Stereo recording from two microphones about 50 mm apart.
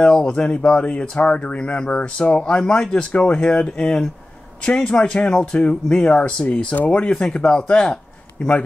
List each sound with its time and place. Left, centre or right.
0.0 s speech: centre
2.9 s speech: left
7.1 s speech: centre